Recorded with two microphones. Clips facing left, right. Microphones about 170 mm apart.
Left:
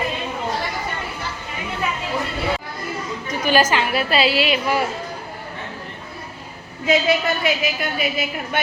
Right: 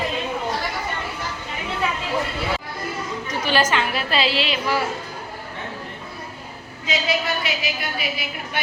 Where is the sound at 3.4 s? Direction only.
5° left (ahead or behind).